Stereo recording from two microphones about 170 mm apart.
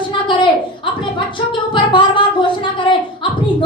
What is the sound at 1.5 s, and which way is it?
Music, 30° left (ahead or behind).